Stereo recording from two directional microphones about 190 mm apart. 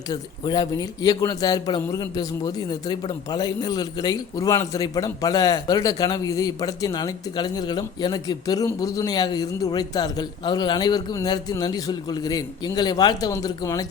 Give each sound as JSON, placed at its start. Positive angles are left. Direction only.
{"t": 0.1, "sound": "speech", "side_deg": 25}